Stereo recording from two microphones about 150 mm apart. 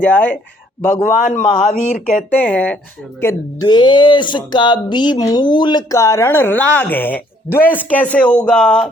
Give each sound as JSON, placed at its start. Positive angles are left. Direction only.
{"t": 0.0, "sound": "speech", "side_deg": 10}
{"t": 1.0, "sound": "a man's voice", "side_deg": 60}
{"t": 2.4, "sound": "speech", "side_deg": 10}
{"t": 3.7, "sound": "speech", "side_deg": 30}